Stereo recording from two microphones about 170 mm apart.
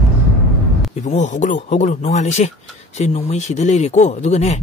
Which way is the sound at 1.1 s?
45° left (ahead or behind).